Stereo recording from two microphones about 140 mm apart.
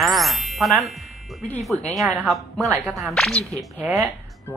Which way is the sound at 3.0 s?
Centre (ahead or behind).